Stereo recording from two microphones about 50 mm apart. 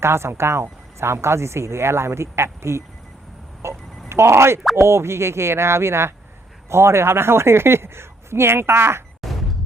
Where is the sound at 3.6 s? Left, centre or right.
Right.